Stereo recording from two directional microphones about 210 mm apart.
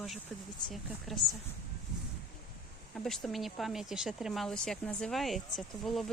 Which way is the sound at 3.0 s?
Centre (ahead or behind).